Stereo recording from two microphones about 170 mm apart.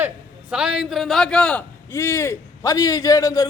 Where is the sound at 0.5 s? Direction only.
5° right (ahead or behind).